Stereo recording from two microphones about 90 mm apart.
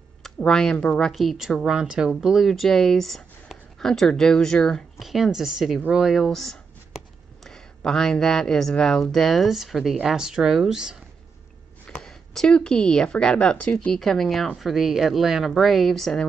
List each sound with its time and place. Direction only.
0.4 s speech: 10° left (ahead or behind)
1.1 s speech: centre (ahead or behind)
11.9 s speech: 5° left (ahead or behind)